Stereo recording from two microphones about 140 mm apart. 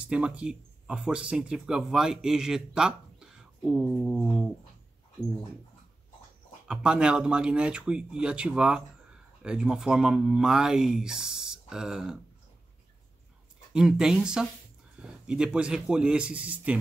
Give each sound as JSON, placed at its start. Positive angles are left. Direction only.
{"t": 0.0, "sound": "speech", "side_deg": -10}
{"t": 6.7, "sound": "speech", "side_deg": -5}
{"t": 13.7, "sound": "speech", "side_deg": -5}